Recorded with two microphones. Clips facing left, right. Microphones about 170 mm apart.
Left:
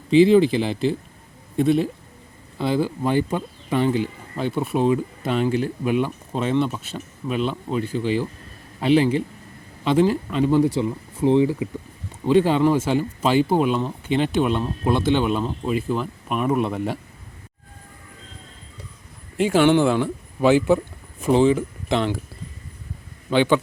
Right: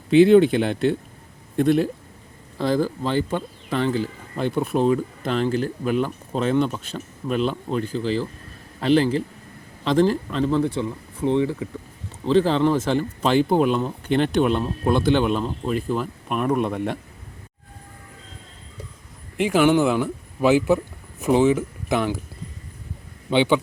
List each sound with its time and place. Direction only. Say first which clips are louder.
0.1 s speech: right 1 dB; centre (ahead or behind)
4.4 s speech: right 1 dB; centre (ahead or behind)
19.4 s speech: left 1 dB; 5° right (ahead or behind)
23.3 s speech: even; 15° right (ahead or behind)